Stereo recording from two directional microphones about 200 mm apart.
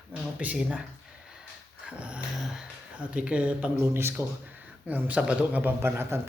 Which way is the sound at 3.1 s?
5° right (ahead or behind).